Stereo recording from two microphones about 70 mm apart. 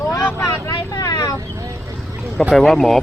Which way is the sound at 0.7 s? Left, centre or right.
Left.